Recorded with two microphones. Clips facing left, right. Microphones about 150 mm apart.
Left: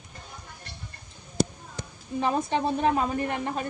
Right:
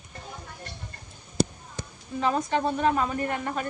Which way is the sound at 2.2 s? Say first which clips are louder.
Even; 20° left (ahead or behind).